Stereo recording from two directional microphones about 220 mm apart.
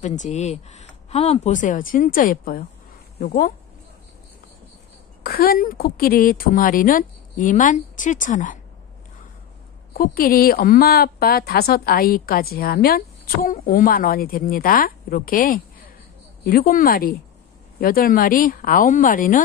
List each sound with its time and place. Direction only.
0.0 s a woman's voice: 35° left (ahead or behind)
5.2 s a woman's voice: 45° left (ahead or behind)
9.9 s a woman's voice: 40° left (ahead or behind)